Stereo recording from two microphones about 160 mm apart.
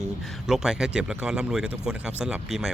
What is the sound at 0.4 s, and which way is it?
Speech, 5° right (ahead or behind).